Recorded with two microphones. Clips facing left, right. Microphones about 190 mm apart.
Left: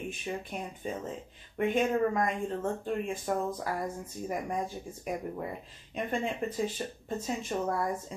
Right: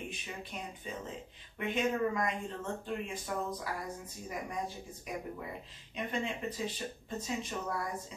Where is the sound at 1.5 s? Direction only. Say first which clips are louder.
Left 5 dB; 50° left (ahead or behind).